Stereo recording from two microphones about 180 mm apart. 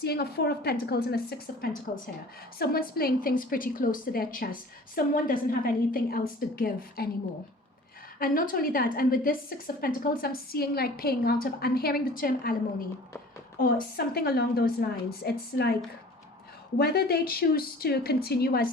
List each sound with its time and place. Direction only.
0.0 s a woman's voice: 60° left (ahead or behind)
2.6 s a woman's voice: 55° left (ahead or behind)
8.2 s a woman's voice: 50° left (ahead or behind)
13.6 s a woman's voice: 55° left (ahead or behind)
16.7 s a woman's voice: 60° left (ahead or behind)